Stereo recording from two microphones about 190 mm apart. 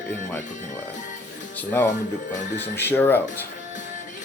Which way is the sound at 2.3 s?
40° left (ahead or behind).